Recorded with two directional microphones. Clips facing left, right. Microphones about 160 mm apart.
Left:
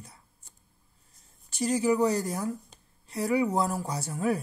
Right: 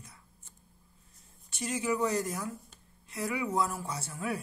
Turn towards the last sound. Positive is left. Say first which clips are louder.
# left 7 dB
turn(degrees=40)  # may be behind; listen again after turning